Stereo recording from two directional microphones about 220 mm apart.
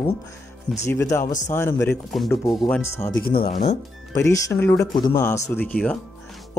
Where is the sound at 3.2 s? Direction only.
25° left (ahead or behind).